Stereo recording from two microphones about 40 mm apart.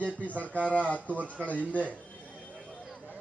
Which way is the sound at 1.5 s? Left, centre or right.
Left.